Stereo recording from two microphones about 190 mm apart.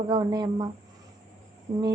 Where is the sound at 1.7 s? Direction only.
40° right (ahead or behind).